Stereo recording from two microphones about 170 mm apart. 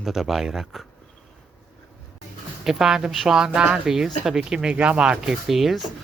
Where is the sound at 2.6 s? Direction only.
5° right (ahead or behind).